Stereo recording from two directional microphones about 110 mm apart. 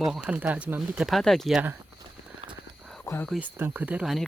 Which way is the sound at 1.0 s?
Centre (ahead or behind).